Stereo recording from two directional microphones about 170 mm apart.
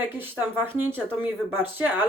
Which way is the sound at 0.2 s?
10° right (ahead or behind).